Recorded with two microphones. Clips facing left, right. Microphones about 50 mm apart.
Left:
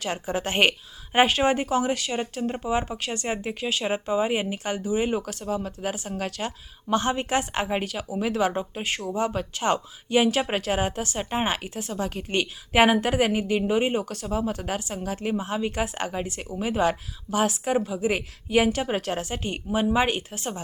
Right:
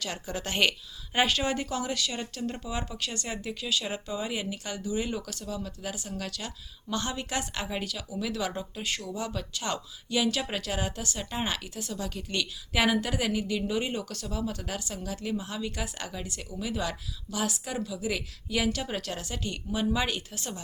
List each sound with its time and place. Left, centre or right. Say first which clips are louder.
0.0 s a woman's voice: left 7 dB; left